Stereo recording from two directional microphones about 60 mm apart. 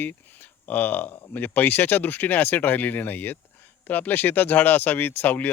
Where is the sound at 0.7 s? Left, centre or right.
Left.